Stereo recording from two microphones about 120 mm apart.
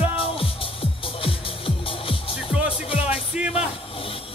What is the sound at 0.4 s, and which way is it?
Music, 50° left (ahead or behind).